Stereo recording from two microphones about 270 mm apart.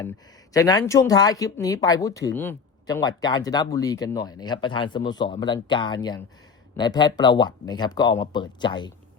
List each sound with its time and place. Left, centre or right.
0.0 s speech: centre